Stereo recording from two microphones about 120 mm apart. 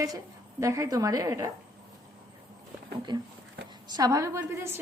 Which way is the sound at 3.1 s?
35° right (ahead or behind).